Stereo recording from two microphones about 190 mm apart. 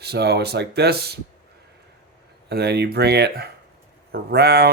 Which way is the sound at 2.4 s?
60° right (ahead or behind).